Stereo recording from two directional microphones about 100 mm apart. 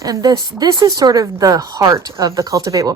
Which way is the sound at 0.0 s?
40° right (ahead or behind).